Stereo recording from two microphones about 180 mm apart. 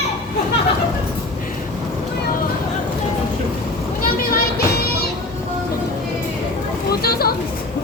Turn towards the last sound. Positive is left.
turn(degrees=60)  # may be behind; listen again after turning